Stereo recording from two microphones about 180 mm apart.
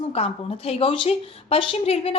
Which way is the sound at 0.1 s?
35° left (ahead or behind).